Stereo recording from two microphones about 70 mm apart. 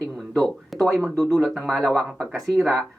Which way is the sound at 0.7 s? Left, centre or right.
Centre.